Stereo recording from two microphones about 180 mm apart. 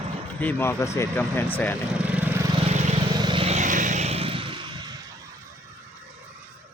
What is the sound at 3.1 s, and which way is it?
Vehicle, 25° right (ahead or behind).